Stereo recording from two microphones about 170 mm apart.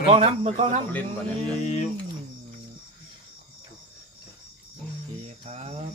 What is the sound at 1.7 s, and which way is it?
Speech, 40° left (ahead or behind).